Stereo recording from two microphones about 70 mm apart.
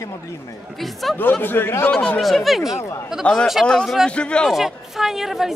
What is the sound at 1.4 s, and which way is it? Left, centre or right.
Speech, left.